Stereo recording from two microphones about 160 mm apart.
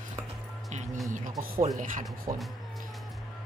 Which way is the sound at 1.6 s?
55° right (ahead or behind).